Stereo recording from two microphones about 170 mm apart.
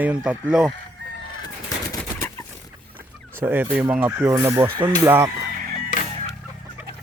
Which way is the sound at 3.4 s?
10° right (ahead or behind).